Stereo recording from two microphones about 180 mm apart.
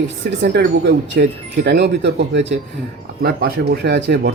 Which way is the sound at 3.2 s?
60° right (ahead or behind).